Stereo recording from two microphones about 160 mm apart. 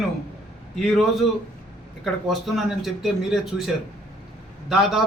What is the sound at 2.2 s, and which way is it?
Speech, centre (ahead or behind).